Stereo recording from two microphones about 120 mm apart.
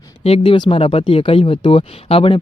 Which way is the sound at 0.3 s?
45° left (ahead or behind).